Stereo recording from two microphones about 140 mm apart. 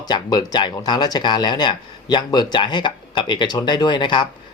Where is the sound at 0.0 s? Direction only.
30° left (ahead or behind).